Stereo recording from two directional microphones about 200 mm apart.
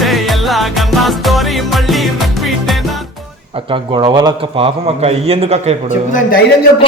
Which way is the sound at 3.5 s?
25° right (ahead or behind).